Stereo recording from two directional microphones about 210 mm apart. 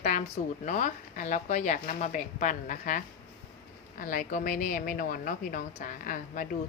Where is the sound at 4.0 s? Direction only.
40° left (ahead or behind).